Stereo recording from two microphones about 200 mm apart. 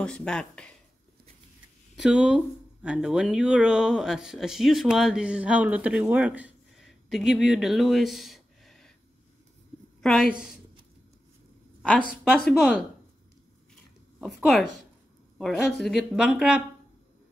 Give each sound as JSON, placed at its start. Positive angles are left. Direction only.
{"t": 0.0, "sound": "speech", "side_deg": 5}
{"t": 2.0, "sound": "speech", "side_deg": -5}
{"t": 10.0, "sound": "speech", "side_deg": 0}
{"t": 12.5, "sound": "speech", "side_deg": 0}
{"t": 14.2, "sound": "speech", "side_deg": 0}